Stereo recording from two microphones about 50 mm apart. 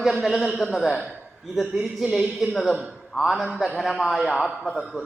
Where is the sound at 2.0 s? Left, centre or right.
Right.